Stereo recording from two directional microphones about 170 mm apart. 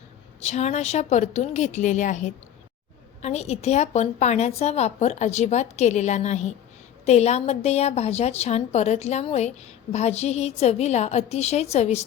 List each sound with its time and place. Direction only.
0.4 s a woman's voice: 40° left (ahead or behind)